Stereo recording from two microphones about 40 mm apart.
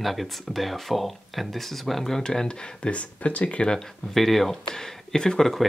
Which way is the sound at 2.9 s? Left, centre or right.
Left.